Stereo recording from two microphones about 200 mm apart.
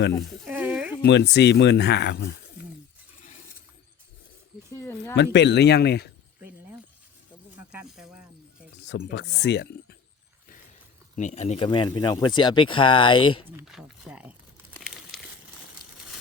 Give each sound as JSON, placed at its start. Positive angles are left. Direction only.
{"t": 0.2, "sound": "a sound", "side_deg": -5}
{"t": 1.0, "sound": "speech", "side_deg": 60}
{"t": 4.7, "sound": "a sound", "side_deg": 15}
{"t": 5.1, "sound": "speech", "side_deg": 60}
{"t": 7.7, "sound": "snake", "side_deg": -5}
{"t": 8.9, "sound": "speech", "side_deg": 60}
{"t": 11.2, "sound": "speech", "side_deg": 35}
{"t": 13.7, "sound": "speech", "side_deg": 0}
{"t": 14.8, "sound": "crumpling", "side_deg": 0}